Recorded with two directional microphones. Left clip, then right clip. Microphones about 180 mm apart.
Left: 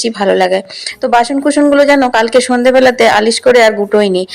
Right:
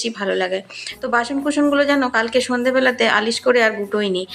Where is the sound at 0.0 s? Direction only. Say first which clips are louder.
Left 10 dB; 40° left (ahead or behind).